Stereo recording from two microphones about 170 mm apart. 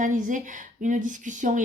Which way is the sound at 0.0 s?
50° right (ahead or behind).